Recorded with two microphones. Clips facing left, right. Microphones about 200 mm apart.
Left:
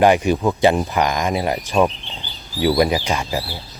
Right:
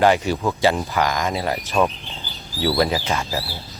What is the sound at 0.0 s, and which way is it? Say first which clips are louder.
Speech: left 3 dB; 15° left (ahead or behind).